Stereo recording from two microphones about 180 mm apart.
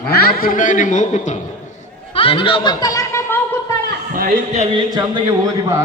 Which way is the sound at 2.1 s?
30° left (ahead or behind).